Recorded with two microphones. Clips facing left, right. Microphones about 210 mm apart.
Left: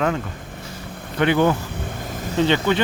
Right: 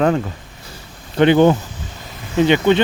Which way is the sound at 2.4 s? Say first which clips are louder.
Right 5 dB; 20° right (ahead or behind).